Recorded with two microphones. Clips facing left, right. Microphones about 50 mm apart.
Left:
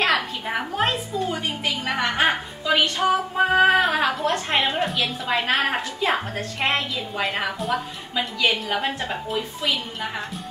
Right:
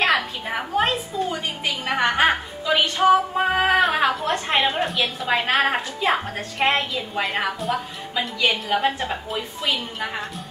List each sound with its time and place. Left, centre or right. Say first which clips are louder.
0.0 s a sound: right 1 dB; centre
2.1 s music: right 2 dB; centre
5.2 s a woman's voice: right 2 dB; centre